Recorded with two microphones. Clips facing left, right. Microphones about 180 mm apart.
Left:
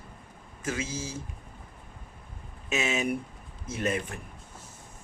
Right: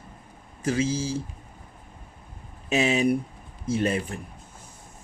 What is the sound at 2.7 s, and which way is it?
Speech, 35° right (ahead or behind).